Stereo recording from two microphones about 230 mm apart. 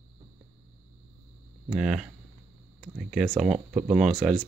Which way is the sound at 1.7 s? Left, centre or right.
Centre.